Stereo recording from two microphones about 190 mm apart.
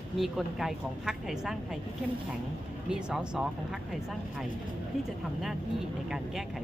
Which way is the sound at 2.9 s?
5° right (ahead or behind).